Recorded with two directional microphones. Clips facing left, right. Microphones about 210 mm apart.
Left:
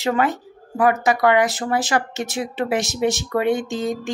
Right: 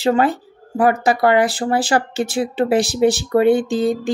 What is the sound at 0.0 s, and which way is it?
Speech, 30° right (ahead or behind).